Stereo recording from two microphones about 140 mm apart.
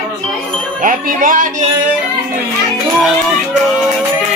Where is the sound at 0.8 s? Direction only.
70° right (ahead or behind).